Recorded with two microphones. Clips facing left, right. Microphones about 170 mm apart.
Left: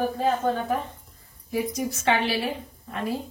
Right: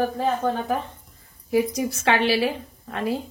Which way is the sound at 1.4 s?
85° right.